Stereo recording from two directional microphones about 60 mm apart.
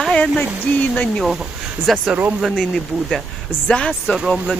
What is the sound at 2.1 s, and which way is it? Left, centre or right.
Speech, right.